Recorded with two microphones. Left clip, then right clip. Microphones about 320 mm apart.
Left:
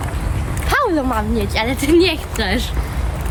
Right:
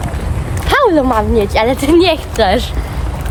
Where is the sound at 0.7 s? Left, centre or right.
Right.